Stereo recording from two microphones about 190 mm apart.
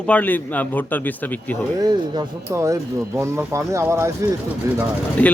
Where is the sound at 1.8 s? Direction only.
20° right (ahead or behind).